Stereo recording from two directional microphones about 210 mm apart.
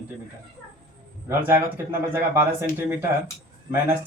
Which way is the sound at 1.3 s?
10° right (ahead or behind).